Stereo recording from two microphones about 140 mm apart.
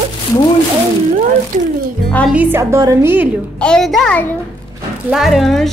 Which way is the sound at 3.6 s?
5° left (ahead or behind).